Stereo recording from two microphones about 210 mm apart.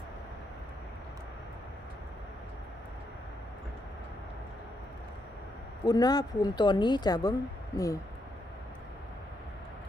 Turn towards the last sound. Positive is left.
turn(degrees=15)  # may be behind; listen again after turning